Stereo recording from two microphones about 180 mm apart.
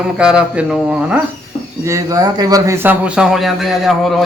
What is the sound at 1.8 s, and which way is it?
A man's voice, 20° right (ahead or behind).